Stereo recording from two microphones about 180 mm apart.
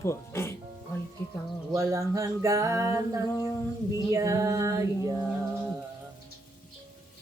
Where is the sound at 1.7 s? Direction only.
15° right (ahead or behind).